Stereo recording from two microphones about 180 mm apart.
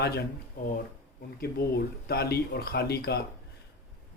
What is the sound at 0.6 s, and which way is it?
Speech, 50° left (ahead or behind).